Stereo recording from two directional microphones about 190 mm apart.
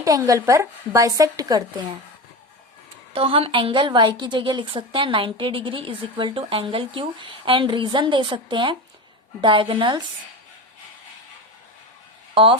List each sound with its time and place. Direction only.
0.0 s speech: 20° right (ahead or behind)
3.1 s a woman's voice: 30° right (ahead or behind)
12.3 s speech: 25° right (ahead or behind)